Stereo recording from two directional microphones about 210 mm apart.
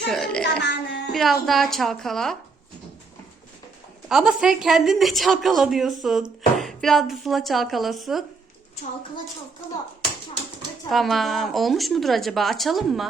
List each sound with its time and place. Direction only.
0.1 s a woman's voice: 5° left (ahead or behind)
0.6 s speech: 55° left (ahead or behind)
1.1 s a woman's voice: centre (ahead or behind)
4.1 s a woman's voice: 5° right (ahead or behind)
10.8 s a woman's voice: centre (ahead or behind)